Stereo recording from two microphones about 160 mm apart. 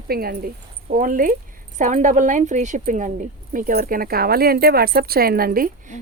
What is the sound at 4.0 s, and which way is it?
A woman's voice, 70° right (ahead or behind).